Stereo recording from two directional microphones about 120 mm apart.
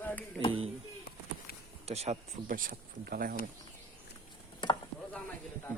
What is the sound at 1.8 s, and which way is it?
Speech, 60° right (ahead or behind).